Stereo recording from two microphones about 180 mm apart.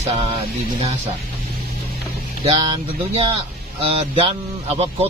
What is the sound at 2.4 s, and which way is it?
Speech, 30° right (ahead or behind).